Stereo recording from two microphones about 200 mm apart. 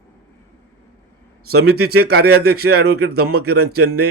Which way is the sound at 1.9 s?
50° right (ahead or behind).